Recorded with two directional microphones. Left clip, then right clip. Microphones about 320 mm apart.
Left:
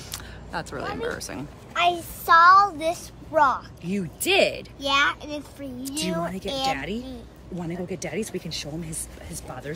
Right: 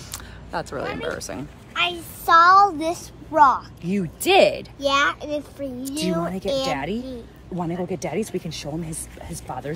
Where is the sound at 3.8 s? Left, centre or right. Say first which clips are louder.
Right 4 dB; centre.